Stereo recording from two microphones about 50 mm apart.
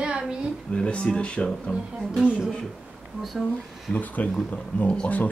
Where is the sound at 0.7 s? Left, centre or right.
Left.